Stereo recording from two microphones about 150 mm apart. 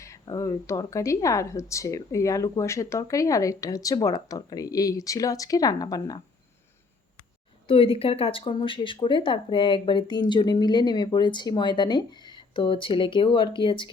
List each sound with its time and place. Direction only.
0.0 s a woman's voice: 20° left (ahead or behind)
7.7 s speech: 40° left (ahead or behind)